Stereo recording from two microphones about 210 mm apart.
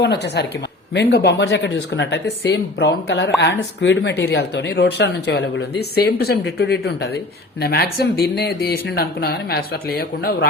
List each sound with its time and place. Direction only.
0.0 s speech: 55° left (ahead or behind)